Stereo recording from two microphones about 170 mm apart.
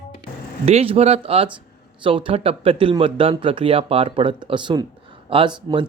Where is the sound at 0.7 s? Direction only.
35° right (ahead or behind).